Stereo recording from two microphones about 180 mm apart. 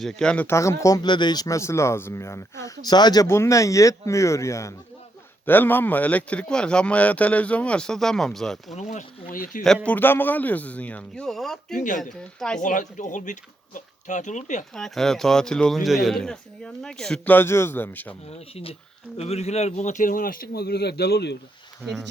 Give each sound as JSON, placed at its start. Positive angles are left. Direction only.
{"t": 0.0, "sound": "speech", "side_deg": 5}
{"t": 8.7, "sound": "speech", "side_deg": 40}
{"t": 9.8, "sound": "speech", "side_deg": 10}
{"t": 11.7, "sound": "speech", "side_deg": 45}
{"t": 12.4, "sound": "speech", "side_deg": 5}
{"t": 12.6, "sound": "speech", "side_deg": 45}
{"t": 14.8, "sound": "speech", "side_deg": 0}
{"t": 18.3, "sound": "speech", "side_deg": 35}